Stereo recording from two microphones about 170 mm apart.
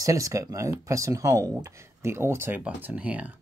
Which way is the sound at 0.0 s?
20° right (ahead or behind).